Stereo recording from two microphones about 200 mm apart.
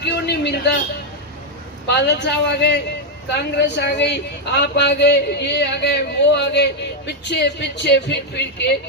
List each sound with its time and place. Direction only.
0.0 s a man's voice: 55° left (ahead or behind)
1.9 s speech: 55° left (ahead or behind)